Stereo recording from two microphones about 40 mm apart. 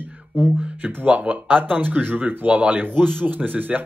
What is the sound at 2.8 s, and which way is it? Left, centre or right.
Speech, right.